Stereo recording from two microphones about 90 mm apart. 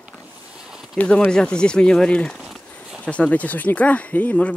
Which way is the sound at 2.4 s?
5° right (ahead or behind).